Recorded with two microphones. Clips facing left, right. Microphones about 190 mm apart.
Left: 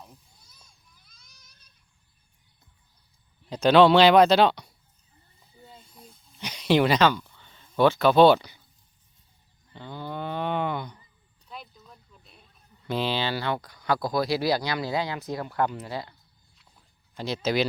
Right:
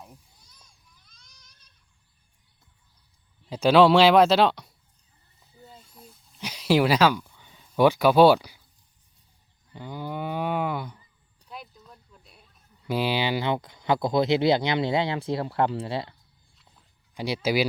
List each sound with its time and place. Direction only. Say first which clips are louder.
0.6 s a sound: even; 5° left (ahead or behind)
3.5 s speech: even; 5° right (ahead or behind)
5.6 s a sound: right 1 dB; 5° right (ahead or behind)
9.7 s cattle: right 2 dB; 10° right (ahead or behind)
12.9 s speech: right 2 dB; 10° right (ahead or behind); by 16.1 s 25° right (ahead or behind)
17.2 s speech: right 1 dB; 10° right (ahead or behind)